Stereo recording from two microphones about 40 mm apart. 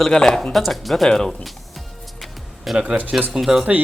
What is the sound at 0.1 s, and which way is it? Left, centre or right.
Speech, centre.